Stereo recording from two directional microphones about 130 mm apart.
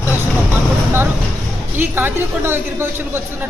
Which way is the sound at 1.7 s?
15° right (ahead or behind).